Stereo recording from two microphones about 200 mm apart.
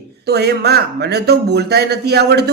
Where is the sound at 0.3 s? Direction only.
55° right (ahead or behind).